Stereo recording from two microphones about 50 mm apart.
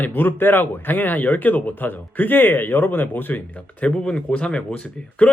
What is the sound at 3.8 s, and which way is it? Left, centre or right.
Speech, left.